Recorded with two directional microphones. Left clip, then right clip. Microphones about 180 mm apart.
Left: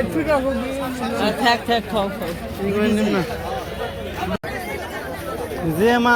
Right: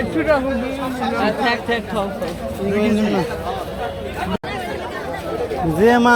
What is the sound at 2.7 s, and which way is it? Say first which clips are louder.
Speech: right 1 dB; 10° right (ahead or behind).